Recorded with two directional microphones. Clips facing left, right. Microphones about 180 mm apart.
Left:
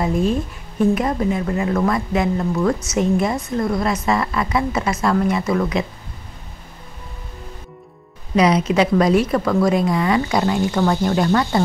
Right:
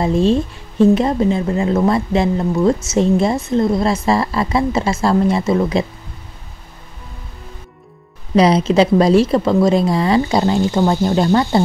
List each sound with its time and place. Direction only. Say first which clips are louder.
0.0 s speech: right 4 dB; 25° right (ahead or behind)
8.4 s speech: right 4 dB; 30° right (ahead or behind)